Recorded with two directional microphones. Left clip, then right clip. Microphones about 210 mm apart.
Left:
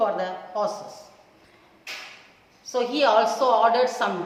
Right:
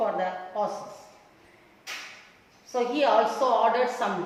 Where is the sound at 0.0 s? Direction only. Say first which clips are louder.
Left 3 dB; 25° left (ahead or behind).